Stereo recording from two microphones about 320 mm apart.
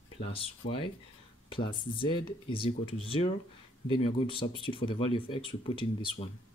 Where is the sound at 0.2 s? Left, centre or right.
Centre.